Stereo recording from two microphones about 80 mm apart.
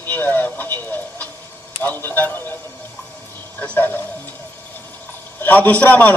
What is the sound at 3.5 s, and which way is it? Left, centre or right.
Speech, left.